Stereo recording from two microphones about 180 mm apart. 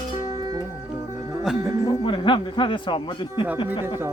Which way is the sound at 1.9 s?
25° left (ahead or behind).